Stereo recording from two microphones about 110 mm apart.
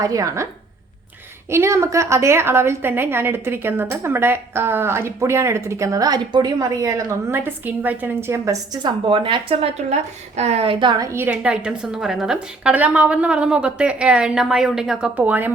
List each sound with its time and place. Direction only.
0.0 s a woman's voice: 30° right (ahead or behind)
1.5 s a woman's voice: 25° right (ahead or behind)
8.4 s a woman's voice: 35° right (ahead or behind)
9.0 s speech: 50° right (ahead or behind)
11.0 s a woman's voice: 20° right (ahead or behind); by 15.1 s 5° right (ahead or behind)
15.1 s a woman's voice: 15° right (ahead or behind)